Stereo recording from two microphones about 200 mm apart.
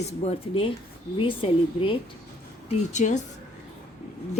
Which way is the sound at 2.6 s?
35° left (ahead or behind).